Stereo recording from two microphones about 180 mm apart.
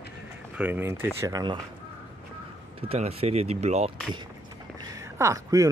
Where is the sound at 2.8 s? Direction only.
35° right (ahead or behind).